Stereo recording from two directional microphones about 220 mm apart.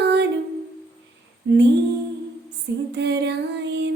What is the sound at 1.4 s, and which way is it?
Female singing, 60° right (ahead or behind).